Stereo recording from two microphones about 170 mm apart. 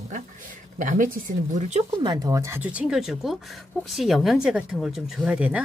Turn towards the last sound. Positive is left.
turn(degrees=-5)  # may be behind; listen again after turning